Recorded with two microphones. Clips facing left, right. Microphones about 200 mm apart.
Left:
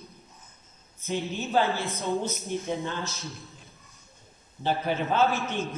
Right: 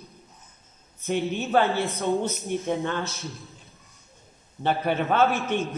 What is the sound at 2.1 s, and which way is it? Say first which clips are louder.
A man's voice: right 1 dB; centre (ahead or behind).